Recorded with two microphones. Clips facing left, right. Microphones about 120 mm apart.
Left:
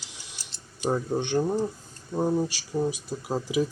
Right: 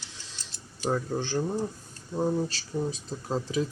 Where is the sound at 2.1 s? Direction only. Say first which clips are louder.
Left 2 dB; 15° left (ahead or behind).